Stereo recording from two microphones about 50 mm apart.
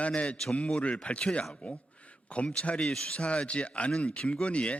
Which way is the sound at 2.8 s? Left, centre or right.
Centre.